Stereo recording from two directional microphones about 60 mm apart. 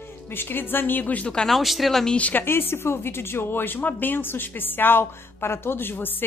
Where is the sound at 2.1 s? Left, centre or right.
Left.